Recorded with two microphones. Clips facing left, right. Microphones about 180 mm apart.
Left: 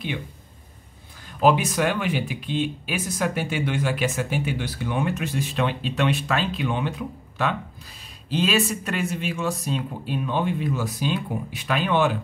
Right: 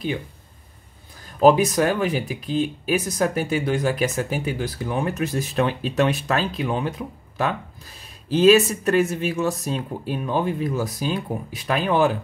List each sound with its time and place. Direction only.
1.4 s speech: 40° right (ahead or behind)
8.4 s speech: 45° right (ahead or behind)